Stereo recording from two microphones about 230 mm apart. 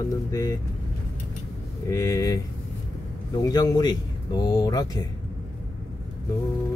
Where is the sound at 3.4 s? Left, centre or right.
Centre.